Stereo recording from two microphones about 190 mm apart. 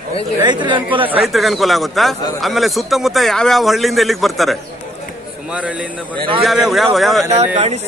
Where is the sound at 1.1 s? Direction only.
5° right (ahead or behind).